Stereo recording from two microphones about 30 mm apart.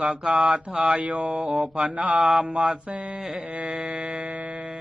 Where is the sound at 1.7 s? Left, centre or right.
Right.